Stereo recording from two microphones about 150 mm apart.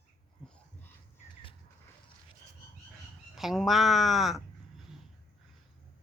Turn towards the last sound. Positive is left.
turn(degrees=0)  # may be behind; listen again after turning